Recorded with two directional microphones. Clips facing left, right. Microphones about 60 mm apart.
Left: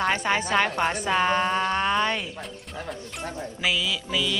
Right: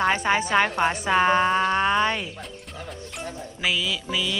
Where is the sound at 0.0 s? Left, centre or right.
Centre.